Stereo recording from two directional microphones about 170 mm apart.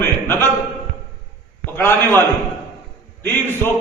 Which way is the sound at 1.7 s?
10° left (ahead or behind).